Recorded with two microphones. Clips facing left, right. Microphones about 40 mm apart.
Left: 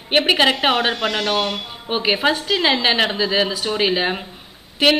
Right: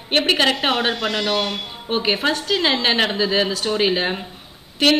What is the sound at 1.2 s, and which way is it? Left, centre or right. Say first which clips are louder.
Speech: left 1 dB; left.